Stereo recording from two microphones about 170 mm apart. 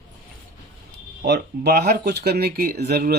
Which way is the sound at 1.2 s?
75° right (ahead or behind).